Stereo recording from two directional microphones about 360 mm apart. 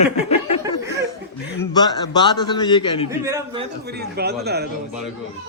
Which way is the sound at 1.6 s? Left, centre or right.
Centre.